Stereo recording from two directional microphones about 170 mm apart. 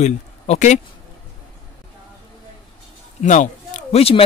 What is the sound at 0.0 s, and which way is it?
Speech, 45° left (ahead or behind).